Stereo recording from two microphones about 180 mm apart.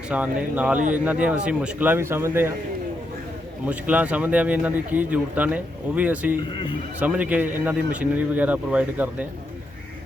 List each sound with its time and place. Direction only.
0.1 s speech: 5° right (ahead or behind)
3.7 s speech: 10° right (ahead or behind)
6.5 s speech: 25° left (ahead or behind)
7.0 s speech: 10° right (ahead or behind)